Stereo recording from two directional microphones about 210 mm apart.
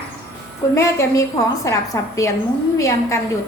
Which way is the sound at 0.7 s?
15° left (ahead or behind).